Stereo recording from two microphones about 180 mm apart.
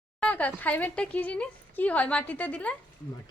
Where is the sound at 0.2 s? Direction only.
5° left (ahead or behind).